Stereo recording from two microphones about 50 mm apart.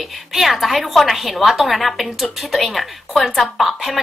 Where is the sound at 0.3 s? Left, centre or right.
Centre.